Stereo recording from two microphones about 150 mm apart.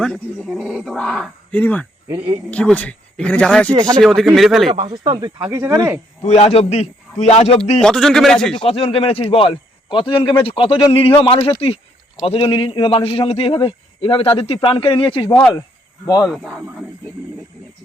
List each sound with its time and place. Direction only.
0.0 s speech: 5° left (ahead or behind)
2.1 s speech: 35° right (ahead or behind)
2.5 s speech: 10° left (ahead or behind)
4.7 s speech: 35° right (ahead or behind)
6.2 s a man's voice: 45° left (ahead or behind)
7.8 s speech: 5° left (ahead or behind)
8.5 s a man's voice: 40° left (ahead or behind)
15.3 s speech: 10° left (ahead or behind)
16.2 s speech: 5° right (ahead or behind)